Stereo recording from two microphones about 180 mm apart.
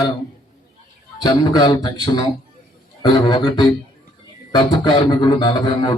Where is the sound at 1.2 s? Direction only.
25° left (ahead or behind).